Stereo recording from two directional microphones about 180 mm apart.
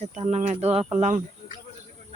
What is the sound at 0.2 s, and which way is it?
Speech, 35° right (ahead or behind).